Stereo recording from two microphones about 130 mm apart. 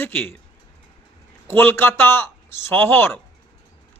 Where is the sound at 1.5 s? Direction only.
15° left (ahead or behind).